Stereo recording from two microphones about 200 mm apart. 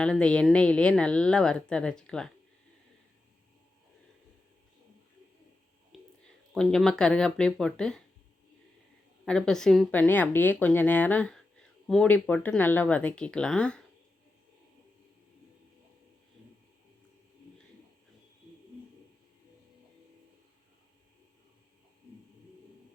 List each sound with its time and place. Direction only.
0.0 s speech: 5° left (ahead or behind)
5.9 s a sound: centre (ahead or behind)
6.5 s speech: centre (ahead or behind)
9.2 s speech: 5° left (ahead or behind)